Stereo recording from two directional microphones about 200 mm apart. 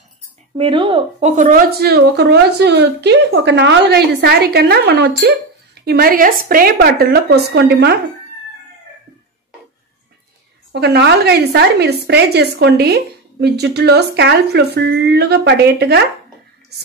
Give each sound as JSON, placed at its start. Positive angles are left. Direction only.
{"t": 0.6, "sound": "a woman's voice", "side_deg": -25}
{"t": 10.7, "sound": "a woman's voice", "side_deg": -55}